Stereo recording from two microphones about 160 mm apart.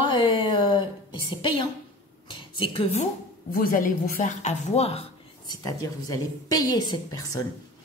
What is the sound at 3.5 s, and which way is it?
A woman's voice, 60° left (ahead or behind).